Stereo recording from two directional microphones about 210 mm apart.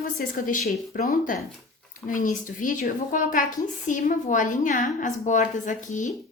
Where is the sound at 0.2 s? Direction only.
45° left (ahead or behind).